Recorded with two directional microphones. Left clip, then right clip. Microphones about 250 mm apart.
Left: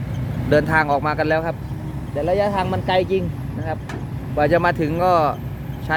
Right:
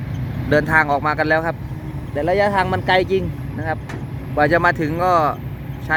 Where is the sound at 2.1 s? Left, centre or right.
Centre.